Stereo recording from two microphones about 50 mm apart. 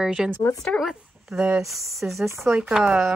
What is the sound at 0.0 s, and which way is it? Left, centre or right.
Speech, centre.